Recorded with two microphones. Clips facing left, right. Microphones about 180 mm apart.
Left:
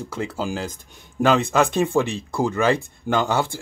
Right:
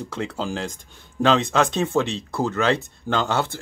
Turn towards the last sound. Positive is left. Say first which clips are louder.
# left 2 dB
turn(degrees=10)  # may be behind; listen again after turning